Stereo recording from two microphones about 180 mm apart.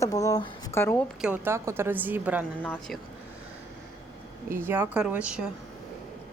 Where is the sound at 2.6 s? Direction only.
5° left (ahead or behind).